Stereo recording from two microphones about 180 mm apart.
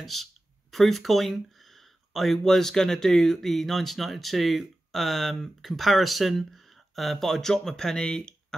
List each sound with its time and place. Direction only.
0.0 s speech: centre (ahead or behind)